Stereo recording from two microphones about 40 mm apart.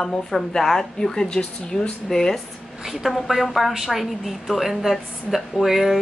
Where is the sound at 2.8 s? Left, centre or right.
Centre.